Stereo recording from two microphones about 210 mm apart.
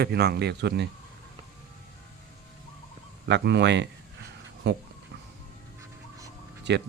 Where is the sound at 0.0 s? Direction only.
50° right (ahead or behind).